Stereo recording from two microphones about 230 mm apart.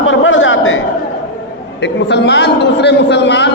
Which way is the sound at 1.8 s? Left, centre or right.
Left.